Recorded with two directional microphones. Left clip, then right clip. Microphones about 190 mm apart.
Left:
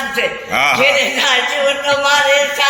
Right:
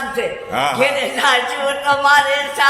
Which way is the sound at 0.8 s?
15° right (ahead or behind).